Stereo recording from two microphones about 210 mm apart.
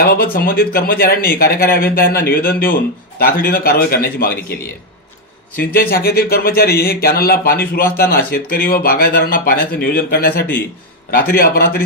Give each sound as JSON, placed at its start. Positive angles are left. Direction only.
{"t": 0.0, "sound": "speech", "side_deg": 45}
{"t": 5.7, "sound": "speech", "side_deg": 45}